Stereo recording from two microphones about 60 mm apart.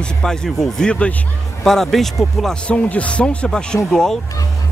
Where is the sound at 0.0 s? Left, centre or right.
Centre.